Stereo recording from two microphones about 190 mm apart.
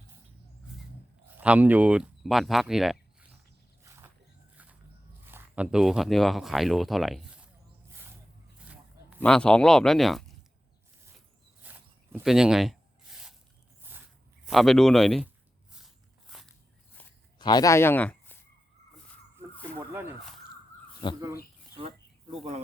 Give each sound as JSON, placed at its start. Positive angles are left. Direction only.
{"t": 1.4, "sound": "speech", "side_deg": -10}
{"t": 3.8, "sound": "wild animals", "side_deg": -15}
{"t": 5.2, "sound": "speech", "side_deg": -10}
{"t": 8.5, "sound": "a sound", "side_deg": -5}
{"t": 9.2, "sound": "speech", "side_deg": 5}
{"t": 11.6, "sound": "a sound", "side_deg": -10}
{"t": 14.4, "sound": "speech", "side_deg": 0}
{"t": 17.0, "sound": "a sound", "side_deg": 10}
{"t": 17.3, "sound": "speech", "side_deg": 20}
{"t": 19.9, "sound": "speech", "side_deg": -10}
{"t": 21.0, "sound": "speech", "side_deg": 25}
{"t": 21.8, "sound": "a sound", "side_deg": -30}